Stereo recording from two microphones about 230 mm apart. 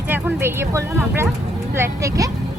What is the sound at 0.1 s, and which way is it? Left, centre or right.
Speech, centre.